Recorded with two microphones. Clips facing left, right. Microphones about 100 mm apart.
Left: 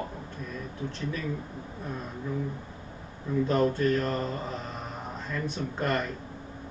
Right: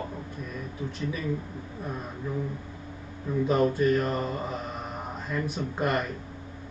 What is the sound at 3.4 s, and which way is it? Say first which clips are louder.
Speech: right 2 dB; 10° right (ahead or behind).